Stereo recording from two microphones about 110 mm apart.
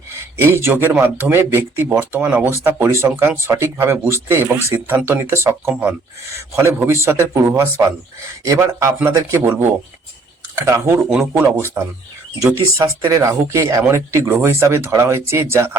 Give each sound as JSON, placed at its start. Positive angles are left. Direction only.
{"t": 0.4, "sound": "speech", "side_deg": -20}
{"t": 6.7, "sound": "speech", "side_deg": -25}
{"t": 11.1, "sound": "speech", "side_deg": -10}
{"t": 11.4, "sound": "speech", "side_deg": -25}